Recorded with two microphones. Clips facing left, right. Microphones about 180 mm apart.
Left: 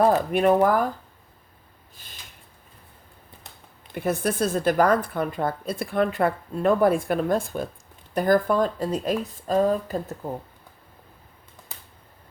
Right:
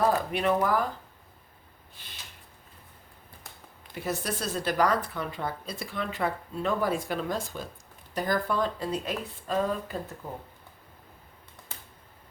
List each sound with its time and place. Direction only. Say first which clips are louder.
0.3 s a woman's voice: left 7 dB; 50° left (ahead or behind)
2.0 s a sound: left 1 dB; 45° left (ahead or behind)
3.9 s a woman's voice: left 7 dB; 55° left (ahead or behind)